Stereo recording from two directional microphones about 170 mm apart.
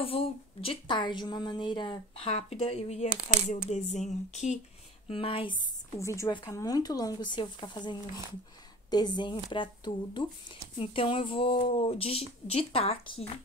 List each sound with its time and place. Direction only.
0.0 s speech: 35° left (ahead or behind)
5.9 s speech: 15° left (ahead or behind)